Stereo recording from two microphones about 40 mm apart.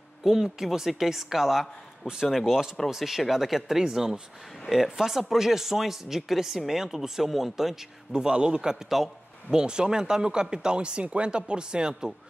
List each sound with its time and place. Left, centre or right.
0.2 s speech: centre
8.1 s speech: centre
8.8 s a man's voice: centre
9.5 s speech: centre